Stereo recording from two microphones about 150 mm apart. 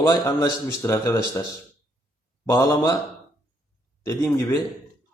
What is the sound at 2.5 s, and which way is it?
Speech, 25° left (ahead or behind).